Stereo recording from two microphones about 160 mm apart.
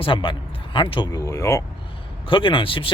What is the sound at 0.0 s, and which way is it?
Speech, 30° left (ahead or behind).